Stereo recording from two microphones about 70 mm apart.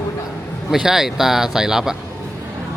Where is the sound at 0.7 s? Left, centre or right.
Centre.